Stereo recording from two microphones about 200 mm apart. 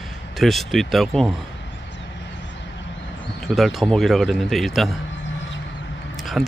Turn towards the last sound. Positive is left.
turn(degrees=0)  # may be behind; listen again after turning